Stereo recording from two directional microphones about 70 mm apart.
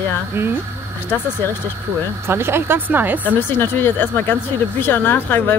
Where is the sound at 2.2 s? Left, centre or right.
Right.